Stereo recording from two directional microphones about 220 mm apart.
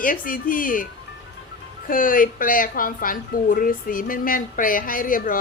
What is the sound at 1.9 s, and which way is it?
Speech, 40° left (ahead or behind).